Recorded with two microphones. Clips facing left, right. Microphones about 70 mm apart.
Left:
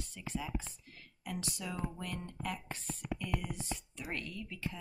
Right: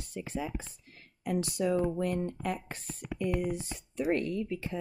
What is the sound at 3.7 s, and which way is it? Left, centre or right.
Speech, right.